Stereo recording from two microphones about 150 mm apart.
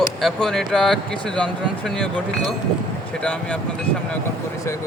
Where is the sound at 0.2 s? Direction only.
Centre (ahead or behind).